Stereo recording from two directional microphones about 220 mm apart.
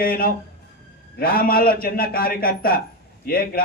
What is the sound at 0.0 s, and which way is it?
A man's voice, 40° left (ahead or behind).